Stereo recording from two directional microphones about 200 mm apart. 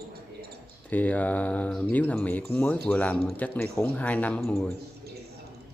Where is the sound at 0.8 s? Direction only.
10° left (ahead or behind).